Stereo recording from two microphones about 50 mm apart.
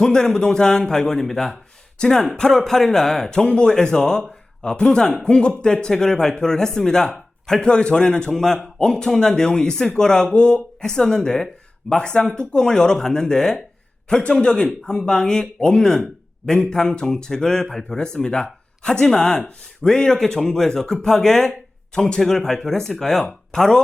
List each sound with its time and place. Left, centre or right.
0.0 s speech: centre